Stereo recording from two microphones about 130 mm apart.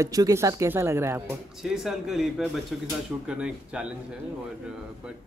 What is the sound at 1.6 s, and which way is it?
Speech, 5° right (ahead or behind).